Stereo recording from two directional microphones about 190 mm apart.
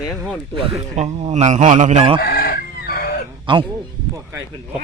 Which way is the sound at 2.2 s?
50° left (ahead or behind).